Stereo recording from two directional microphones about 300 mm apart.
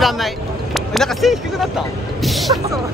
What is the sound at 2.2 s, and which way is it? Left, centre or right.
Music, centre.